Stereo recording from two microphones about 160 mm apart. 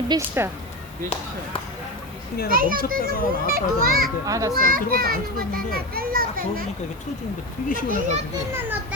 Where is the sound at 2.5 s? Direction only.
60° right (ahead or behind).